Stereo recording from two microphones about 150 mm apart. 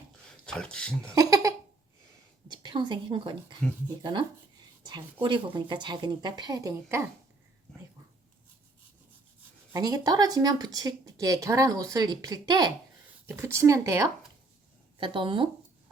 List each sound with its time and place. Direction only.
0.4 s speech: 5° left (ahead or behind)
1.1 s laughter: 20° right (ahead or behind)
2.5 s a woman's voice: 30° right (ahead or behind)
9.7 s speech: 25° right (ahead or behind)
14.9 s speech: 35° right (ahead or behind)